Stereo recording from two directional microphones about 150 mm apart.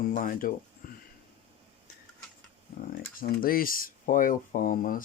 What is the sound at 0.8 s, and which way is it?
Sniff, 70° left (ahead or behind).